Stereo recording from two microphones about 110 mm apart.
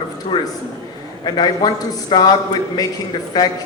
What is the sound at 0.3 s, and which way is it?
A woman's voice, 40° left (ahead or behind).